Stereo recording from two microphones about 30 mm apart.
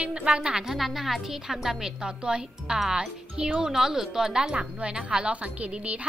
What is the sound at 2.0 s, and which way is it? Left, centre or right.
Speech, right.